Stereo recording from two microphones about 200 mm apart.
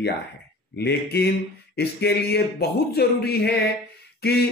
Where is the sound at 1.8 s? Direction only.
55° left (ahead or behind).